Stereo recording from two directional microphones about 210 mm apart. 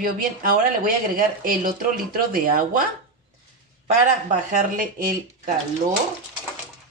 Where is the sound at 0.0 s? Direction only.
40° right (ahead or behind).